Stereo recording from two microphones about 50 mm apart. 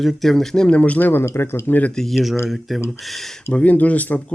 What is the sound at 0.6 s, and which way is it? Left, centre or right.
Speech, left.